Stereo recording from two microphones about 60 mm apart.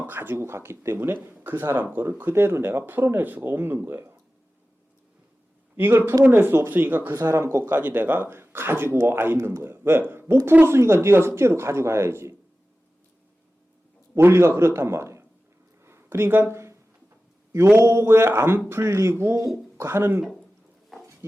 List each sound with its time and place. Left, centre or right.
0.0 s speech: right
5.7 s speech: right
7.3 s speech: right
7.7 s speech: right
9.4 s speech: right
14.2 s speech: right
15.8 s a sound: right
17.7 s speech: right